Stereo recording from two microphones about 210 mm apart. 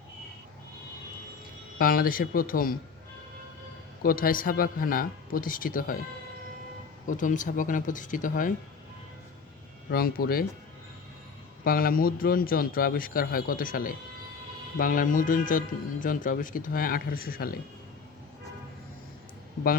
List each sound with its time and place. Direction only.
1.8 s a man's voice: 45° left (ahead or behind)
4.0 s a man's voice: 45° left (ahead or behind)
7.1 s a man's voice: 40° left (ahead or behind)
9.9 s a man's voice: 45° left (ahead or behind)
11.6 s a man's voice: 45° left (ahead or behind)